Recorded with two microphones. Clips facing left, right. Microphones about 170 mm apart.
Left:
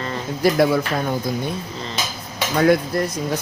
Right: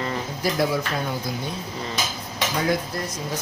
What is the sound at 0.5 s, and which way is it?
Speech, 65° left (ahead or behind).